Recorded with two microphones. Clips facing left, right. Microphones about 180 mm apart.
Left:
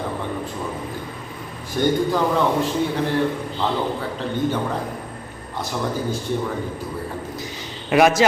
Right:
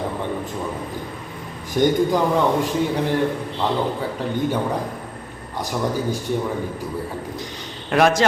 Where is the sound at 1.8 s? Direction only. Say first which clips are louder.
Right 2 dB; 15° right (ahead or behind).